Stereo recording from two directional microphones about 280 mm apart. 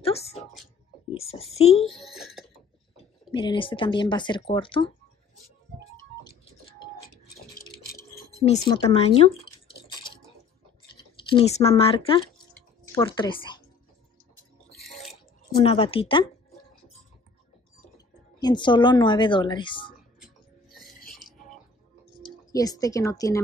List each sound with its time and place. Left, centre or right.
0.0 s a sound: left
1.1 s a woman's voice: left
1.9 s a sound: centre
3.3 s speech: centre
7.8 s dishes: left
11.2 s speech: centre
14.8 s burping: centre
15.5 s speech: centre
18.4 s speech: centre
21.1 s music: centre
22.5 s speech: centre